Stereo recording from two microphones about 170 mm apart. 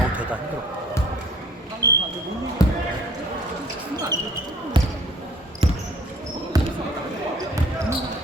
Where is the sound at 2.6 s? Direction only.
20° left (ahead or behind).